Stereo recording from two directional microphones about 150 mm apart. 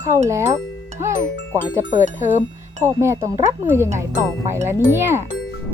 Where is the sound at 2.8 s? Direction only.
15° right (ahead or behind).